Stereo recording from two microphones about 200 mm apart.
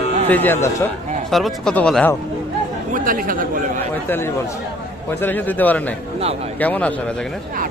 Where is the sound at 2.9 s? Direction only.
45° right (ahead or behind).